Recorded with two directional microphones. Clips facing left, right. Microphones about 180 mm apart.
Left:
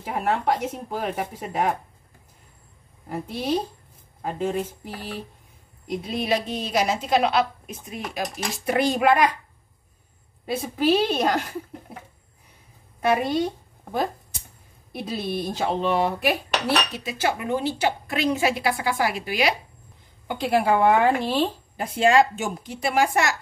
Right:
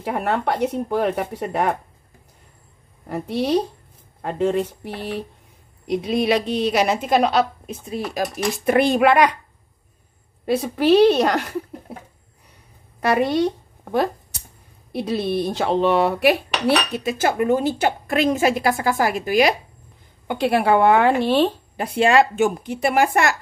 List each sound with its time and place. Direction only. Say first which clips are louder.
0.0 s speech: right 2 dB; 65° right (ahead or behind)
3.1 s speech: right 5 dB; 75° right (ahead or behind)
5.9 s speech: right 5 dB; 80° right; by 8.2 s 30° right (ahead or behind)
8.6 s speech: right 4 dB; 60° right (ahead or behind)
10.4 s speech: right 4 dB; 70° right (ahead or behind)
13.0 s speech: right 3 dB; 75° right (ahead or behind)
14.9 s dishes: right 6 dB; 70° right (ahead or behind); by 19.5 s 45° right (ahead or behind)
20.2 s speech: right 3 dB; 70° right (ahead or behind)